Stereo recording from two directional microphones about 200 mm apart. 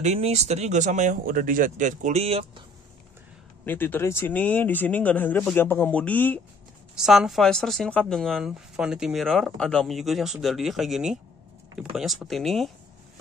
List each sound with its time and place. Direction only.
0.0 s speech: 35° right (ahead or behind)
3.6 s speech: 10° left (ahead or behind)
7.0 s speech: centre (ahead or behind)